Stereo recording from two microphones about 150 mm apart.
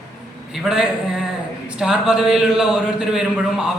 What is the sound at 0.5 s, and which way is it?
A man's voice, 5° right (ahead or behind).